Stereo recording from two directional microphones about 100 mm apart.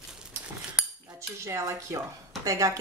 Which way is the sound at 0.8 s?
10° right (ahead or behind).